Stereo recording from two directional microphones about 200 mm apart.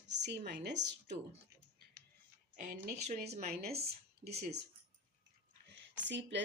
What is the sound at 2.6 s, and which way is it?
Speech, 45° right (ahead or behind).